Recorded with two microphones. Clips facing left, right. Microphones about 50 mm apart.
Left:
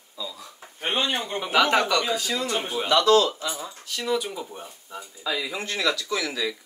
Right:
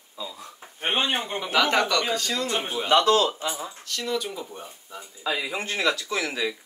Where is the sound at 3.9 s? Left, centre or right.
Centre.